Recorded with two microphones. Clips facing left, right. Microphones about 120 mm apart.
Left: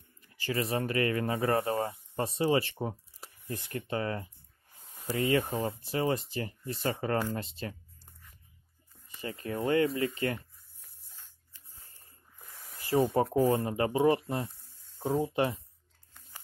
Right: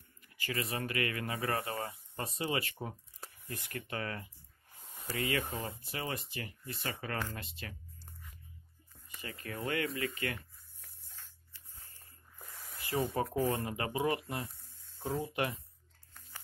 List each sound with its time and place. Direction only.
0.4 s speech: 30° left (ahead or behind)
9.2 s speech: 30° left (ahead or behind)
12.7 s speech: 30° left (ahead or behind)